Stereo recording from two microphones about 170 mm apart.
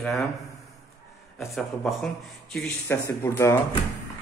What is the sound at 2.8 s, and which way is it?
Speech, 15° left (ahead or behind).